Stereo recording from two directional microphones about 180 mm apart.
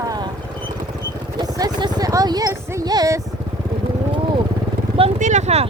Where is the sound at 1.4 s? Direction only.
20° right (ahead or behind).